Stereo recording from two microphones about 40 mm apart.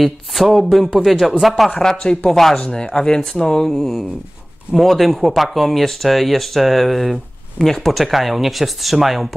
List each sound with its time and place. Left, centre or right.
0.0 s speech: centre
1.8 s speech: centre